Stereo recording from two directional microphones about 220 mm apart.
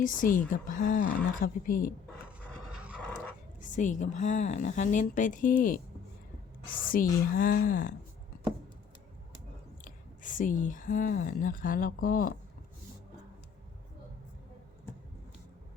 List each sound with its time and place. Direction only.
0.0 s a woman's voice: 35° left (ahead or behind)
3.6 s a woman's voice: 35° left (ahead or behind)
9.8 s speech: 35° left (ahead or behind)